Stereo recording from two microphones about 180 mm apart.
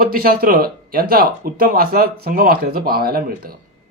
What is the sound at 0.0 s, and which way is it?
A man's voice, 55° right (ahead or behind).